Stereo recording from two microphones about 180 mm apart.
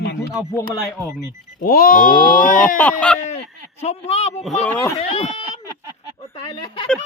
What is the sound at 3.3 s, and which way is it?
Speech, 35° left (ahead or behind).